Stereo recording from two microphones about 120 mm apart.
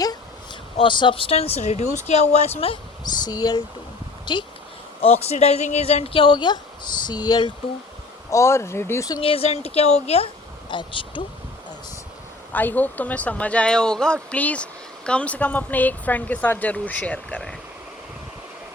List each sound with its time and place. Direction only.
0.8 s speech: 40° left (ahead or behind)
3.0 s speech: 35° left (ahead or behind)
5.2 s speech: 60° left (ahead or behind); by 7.5 s 35° left (ahead or behind)
8.3 s speech: 25° left (ahead or behind)
9.1 s speech: 50° left (ahead or behind)
10.7 s speech: 40° left (ahead or behind)
12.5 s speech: 15° left (ahead or behind)